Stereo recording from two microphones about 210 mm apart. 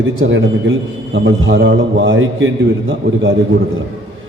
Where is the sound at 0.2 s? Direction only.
65° right (ahead or behind).